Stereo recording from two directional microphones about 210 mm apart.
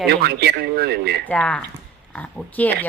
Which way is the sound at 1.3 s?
5° left (ahead or behind).